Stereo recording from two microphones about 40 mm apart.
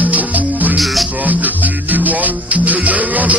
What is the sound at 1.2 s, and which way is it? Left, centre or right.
Music, right.